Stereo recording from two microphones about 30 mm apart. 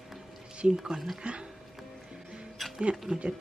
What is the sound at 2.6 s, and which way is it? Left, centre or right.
Music, centre.